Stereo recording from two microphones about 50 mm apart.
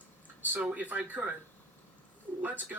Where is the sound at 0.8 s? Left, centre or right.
Right.